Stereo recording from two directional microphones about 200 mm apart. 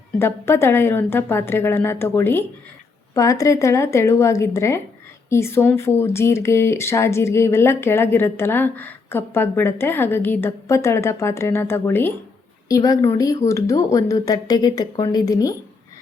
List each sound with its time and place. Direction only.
0.2 s speech: 10° left (ahead or behind)